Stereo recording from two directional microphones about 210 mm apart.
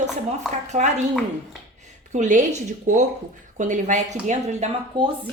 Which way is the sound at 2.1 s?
35° right (ahead or behind).